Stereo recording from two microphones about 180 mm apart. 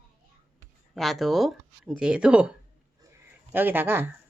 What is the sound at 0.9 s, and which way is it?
Speech, centre (ahead or behind).